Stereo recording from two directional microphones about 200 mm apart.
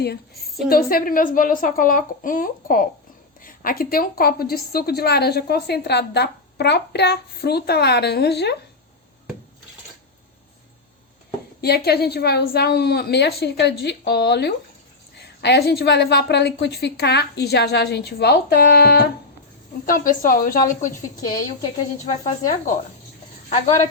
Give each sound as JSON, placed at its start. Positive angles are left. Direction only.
{"t": 0.7, "sound": "a woman's voice", "side_deg": 50}
{"t": 11.6, "sound": "a woman's voice", "side_deg": 55}
{"t": 22.0, "sound": "speech", "side_deg": 40}